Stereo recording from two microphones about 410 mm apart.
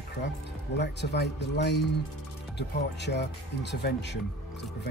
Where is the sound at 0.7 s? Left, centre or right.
Left.